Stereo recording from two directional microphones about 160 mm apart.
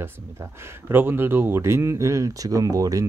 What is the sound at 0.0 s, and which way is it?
Speech, 15° right (ahead or behind).